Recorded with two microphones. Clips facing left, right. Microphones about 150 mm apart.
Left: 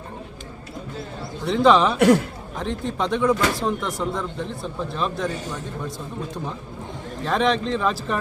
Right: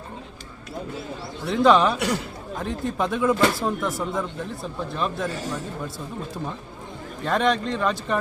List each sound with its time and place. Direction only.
1.5 s speech: centre (ahead or behind)
2.0 s speech: 55° left (ahead or behind)
2.6 s speech: centre (ahead or behind)
7.3 s speech: centre (ahead or behind)